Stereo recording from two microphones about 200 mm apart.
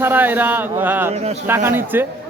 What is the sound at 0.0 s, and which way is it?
Speech, 10° right (ahead or behind).